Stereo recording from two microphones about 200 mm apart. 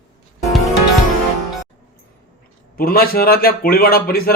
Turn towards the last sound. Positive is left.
turn(degrees=50)  # may be behind; listen again after turning